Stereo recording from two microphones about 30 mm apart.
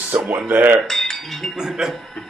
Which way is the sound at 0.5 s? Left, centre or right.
Right.